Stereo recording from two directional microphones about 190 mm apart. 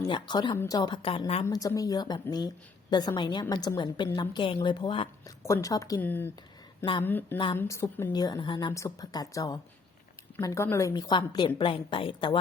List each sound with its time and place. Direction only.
0.0 s a woman's voice: 20° left (ahead or behind)
1.5 s a woman's voice: 15° left (ahead or behind)